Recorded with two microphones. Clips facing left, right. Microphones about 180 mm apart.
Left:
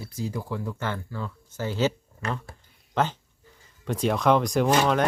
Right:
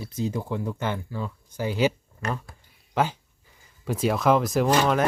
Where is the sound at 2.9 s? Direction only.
10° right (ahead or behind).